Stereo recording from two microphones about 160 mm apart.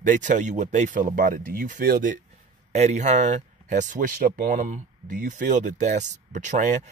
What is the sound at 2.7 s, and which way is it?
Speech, 45° right (ahead or behind).